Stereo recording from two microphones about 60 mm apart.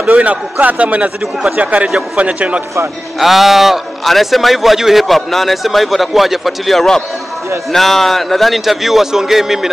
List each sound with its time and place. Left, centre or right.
0.1 s a man's voice: right
3.2 s a man's voice: centre